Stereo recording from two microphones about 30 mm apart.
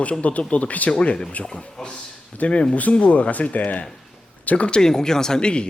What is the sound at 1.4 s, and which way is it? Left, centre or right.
Speech, left.